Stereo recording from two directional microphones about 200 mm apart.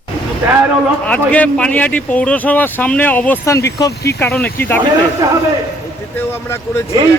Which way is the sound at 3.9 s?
55° left (ahead or behind).